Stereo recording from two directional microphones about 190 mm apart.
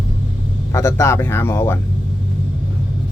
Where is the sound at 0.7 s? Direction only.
15° left (ahead or behind).